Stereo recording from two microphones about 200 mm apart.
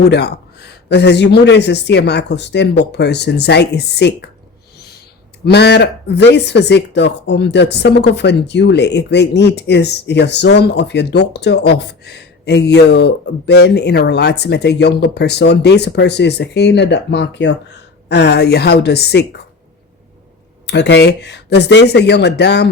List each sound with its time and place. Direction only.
0.0 s speech: 55° left (ahead or behind)
5.5 s speech: 55° left (ahead or behind)
20.7 s speech: 60° left (ahead or behind)